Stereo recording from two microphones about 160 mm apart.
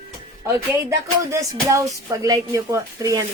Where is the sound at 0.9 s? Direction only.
20° right (ahead or behind).